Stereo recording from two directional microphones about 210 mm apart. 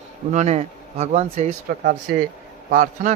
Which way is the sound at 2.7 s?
40° right (ahead or behind).